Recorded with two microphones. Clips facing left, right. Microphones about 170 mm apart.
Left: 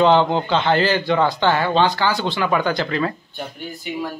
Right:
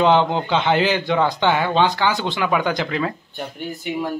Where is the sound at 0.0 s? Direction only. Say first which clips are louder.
Left 1 dB; 15° right (ahead or behind).